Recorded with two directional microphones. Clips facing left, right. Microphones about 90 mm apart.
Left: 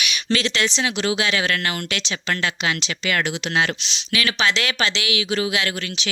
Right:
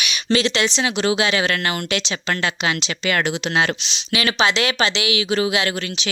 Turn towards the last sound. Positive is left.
turn(degrees=-25)  # may be behind; listen again after turning